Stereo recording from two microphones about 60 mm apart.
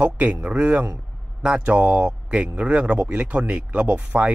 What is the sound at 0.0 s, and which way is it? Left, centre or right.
Speech, right.